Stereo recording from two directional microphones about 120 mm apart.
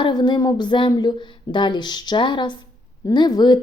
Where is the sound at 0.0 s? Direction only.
40° left (ahead or behind).